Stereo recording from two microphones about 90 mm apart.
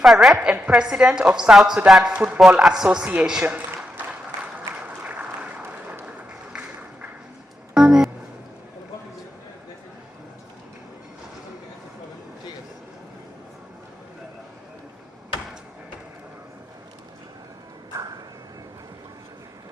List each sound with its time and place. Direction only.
0.0 s a woman's voice: 5° right (ahead or behind)
0.3 s a woman's voice: 15° right (ahead or behind)
2.1 s a woman's voice: 15° right (ahead or behind)
3.8 s a sound: 10° right (ahead or behind)
4.7 s applause: 15° right (ahead or behind)
6.5 s music: 15° right (ahead or behind)